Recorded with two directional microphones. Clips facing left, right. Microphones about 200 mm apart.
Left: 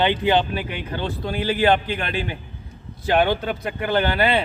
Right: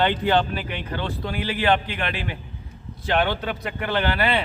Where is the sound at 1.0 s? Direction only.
25° left (ahead or behind).